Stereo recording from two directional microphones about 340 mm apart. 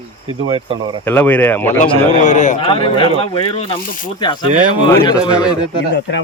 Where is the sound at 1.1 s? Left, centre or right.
Centre.